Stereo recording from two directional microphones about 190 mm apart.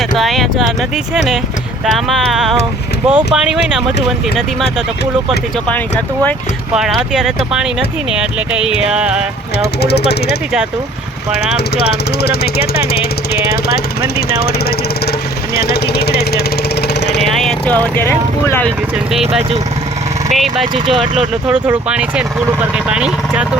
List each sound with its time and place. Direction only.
0.2 s speech: centre (ahead or behind)
1.9 s speech: centre (ahead or behind)
7.1 s speech: 5° right (ahead or behind)
8.9 s speech: 5° right (ahead or behind)
9.8 s speech: 60° left (ahead or behind)
11.5 s speech: 60° left (ahead or behind)
12.7 s speech: 30° left (ahead or behind)
13.5 s speech: 55° left (ahead or behind)
15.5 s speech: 55° left (ahead or behind)
17.2 s speech: centre (ahead or behind)
20.3 s speech: centre (ahead or behind)
20.7 s speech: 25° right (ahead or behind)
21.4 s speech: 5° right (ahead or behind)